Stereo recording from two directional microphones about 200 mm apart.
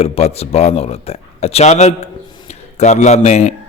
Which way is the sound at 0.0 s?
30° left (ahead or behind).